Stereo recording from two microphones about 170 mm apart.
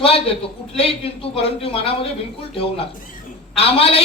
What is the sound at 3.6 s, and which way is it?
Speech, 35° left (ahead or behind).